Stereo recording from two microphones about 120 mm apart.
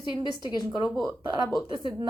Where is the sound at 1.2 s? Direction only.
35° right (ahead or behind).